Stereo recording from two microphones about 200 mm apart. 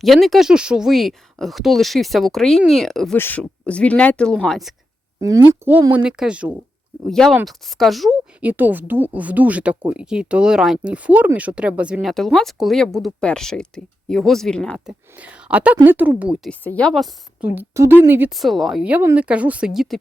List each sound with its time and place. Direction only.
0.0 s speech: centre (ahead or behind)
5.5 s speech: 10° right (ahead or behind)
15.1 s speech: 5° right (ahead or behind)
16.5 s speech: 5° left (ahead or behind)